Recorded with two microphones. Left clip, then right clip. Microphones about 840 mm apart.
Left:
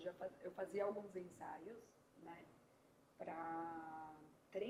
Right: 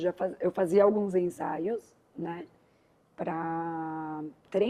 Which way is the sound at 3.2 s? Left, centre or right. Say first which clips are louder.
Right 15 dB; right.